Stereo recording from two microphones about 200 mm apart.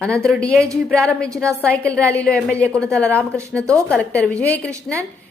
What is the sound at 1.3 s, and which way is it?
Speech, 15° right (ahead or behind).